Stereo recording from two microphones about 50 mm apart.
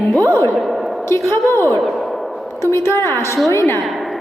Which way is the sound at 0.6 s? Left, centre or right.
Centre.